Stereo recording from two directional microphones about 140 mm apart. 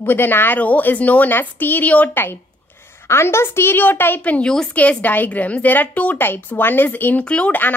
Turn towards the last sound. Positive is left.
turn(degrees=10)  # may be behind; listen again after turning